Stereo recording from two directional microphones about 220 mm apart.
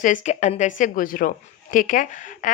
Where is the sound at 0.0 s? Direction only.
35° left (ahead or behind).